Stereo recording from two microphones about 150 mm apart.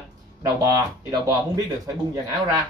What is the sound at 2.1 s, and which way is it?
Speech, 25° right (ahead or behind).